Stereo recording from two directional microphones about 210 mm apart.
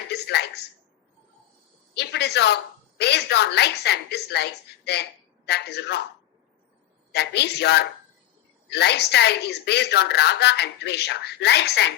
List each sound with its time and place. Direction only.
0.1 s a sound: 50° left (ahead or behind)
2.0 s a woman's voice: 50° left (ahead or behind)
5.5 s a woman's voice: 50° left (ahead or behind)
7.1 s a woman's voice: 50° left (ahead or behind)